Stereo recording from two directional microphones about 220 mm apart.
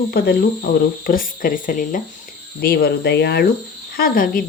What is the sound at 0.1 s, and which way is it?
Speech, 45° left (ahead or behind).